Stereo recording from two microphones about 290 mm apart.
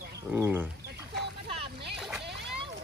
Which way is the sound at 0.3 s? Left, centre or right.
Centre.